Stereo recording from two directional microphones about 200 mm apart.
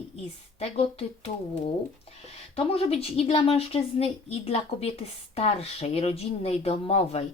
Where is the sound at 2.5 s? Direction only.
30° left (ahead or behind).